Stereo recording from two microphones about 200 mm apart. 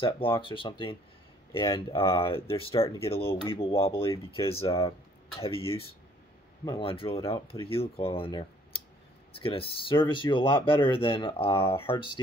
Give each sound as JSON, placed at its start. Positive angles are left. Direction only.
{"t": 0.0, "sound": "speech", "side_deg": 25}